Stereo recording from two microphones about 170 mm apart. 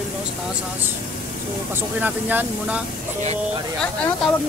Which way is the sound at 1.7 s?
10° right (ahead or behind).